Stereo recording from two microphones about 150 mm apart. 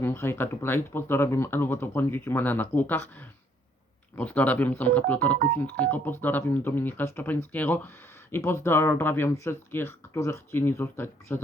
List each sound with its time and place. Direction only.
0.0 s speech: 15° left (ahead or behind)